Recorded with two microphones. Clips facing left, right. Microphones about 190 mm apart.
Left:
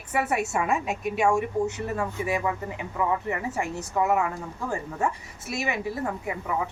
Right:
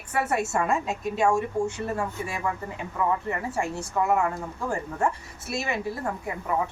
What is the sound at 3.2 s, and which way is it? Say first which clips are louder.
Speech: even; 20° left (ahead or behind).